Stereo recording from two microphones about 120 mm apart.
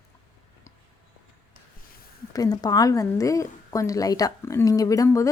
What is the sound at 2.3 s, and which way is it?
A woman's voice, 30° left (ahead or behind).